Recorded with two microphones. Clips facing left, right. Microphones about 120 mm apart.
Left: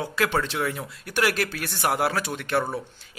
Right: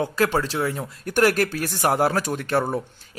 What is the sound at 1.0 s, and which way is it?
A man's voice, 45° right (ahead or behind).